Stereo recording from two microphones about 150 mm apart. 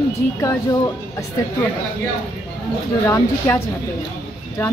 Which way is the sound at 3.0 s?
15° left (ahead or behind).